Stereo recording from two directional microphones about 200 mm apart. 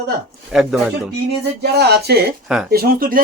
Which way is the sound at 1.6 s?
55° right (ahead or behind).